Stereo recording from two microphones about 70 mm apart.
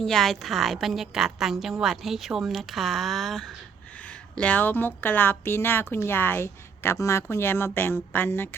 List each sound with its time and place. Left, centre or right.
0.0 s a woman's voice: centre
4.4 s a woman's voice: left